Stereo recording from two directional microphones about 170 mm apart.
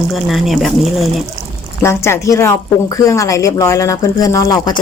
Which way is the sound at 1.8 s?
15° left (ahead or behind).